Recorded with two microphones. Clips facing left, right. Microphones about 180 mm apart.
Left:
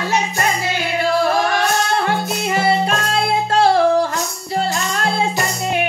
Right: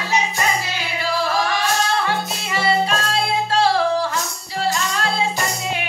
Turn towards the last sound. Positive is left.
turn(degrees=50)  # may be behind; listen again after turning